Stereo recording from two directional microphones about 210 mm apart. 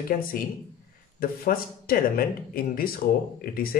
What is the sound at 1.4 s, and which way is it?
Speech, 45° left (ahead or behind).